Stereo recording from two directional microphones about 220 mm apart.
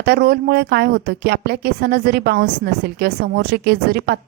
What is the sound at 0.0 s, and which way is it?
Speech, 45° right (ahead or behind).